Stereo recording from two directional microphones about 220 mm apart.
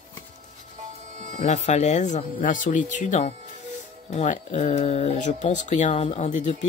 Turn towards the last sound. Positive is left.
turn(degrees=35)  # may be behind; listen again after turning